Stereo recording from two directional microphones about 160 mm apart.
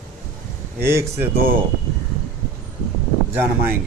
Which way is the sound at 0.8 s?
15° right (ahead or behind).